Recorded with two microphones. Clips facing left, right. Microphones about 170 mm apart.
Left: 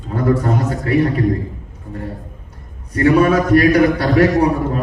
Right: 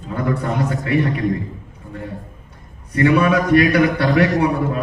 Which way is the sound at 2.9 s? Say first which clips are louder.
Left 2 dB; 40° left (ahead or behind).